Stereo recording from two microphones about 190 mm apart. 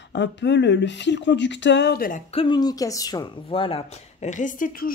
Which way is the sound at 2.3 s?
25° left (ahead or behind).